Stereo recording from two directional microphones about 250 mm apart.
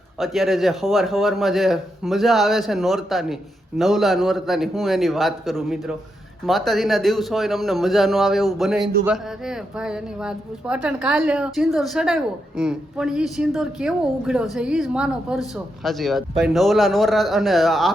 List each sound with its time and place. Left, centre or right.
0.2 s a woman's voice: centre